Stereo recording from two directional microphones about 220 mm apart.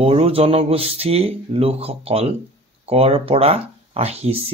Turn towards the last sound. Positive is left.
turn(degrees=-25)  # may be behind; listen again after turning